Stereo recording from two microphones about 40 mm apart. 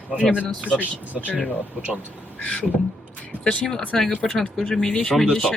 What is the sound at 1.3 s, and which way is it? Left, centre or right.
Speech, left.